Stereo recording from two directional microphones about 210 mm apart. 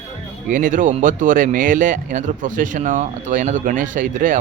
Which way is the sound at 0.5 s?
40° right (ahead or behind).